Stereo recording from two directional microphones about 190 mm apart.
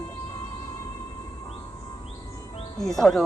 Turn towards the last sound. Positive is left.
turn(degrees=0)  # may be behind; listen again after turning